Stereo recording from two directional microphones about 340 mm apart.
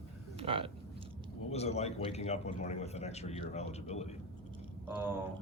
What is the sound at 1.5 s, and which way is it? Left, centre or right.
A man's voice, centre.